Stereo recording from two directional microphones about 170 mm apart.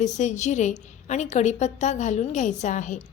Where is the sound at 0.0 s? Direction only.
45° left (ahead or behind).